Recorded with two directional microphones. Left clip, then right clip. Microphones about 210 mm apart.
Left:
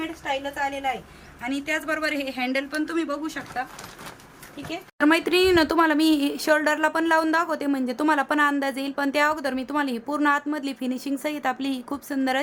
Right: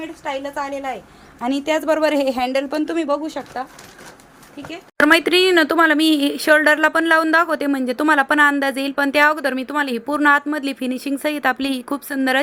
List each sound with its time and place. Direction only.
0.3 s a woman's voice: 15° right (ahead or behind)
4.7 s a woman's voice: 20° right (ahead or behind)